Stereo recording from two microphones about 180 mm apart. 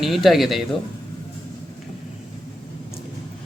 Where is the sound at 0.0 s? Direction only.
Centre (ahead or behind).